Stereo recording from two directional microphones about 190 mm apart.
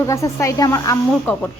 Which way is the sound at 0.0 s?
15° left (ahead or behind).